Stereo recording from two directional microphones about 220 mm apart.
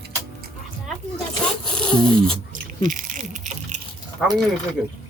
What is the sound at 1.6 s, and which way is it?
Speech, 5° left (ahead or behind).